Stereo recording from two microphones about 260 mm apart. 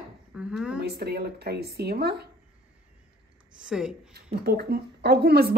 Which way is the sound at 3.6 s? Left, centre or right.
Centre.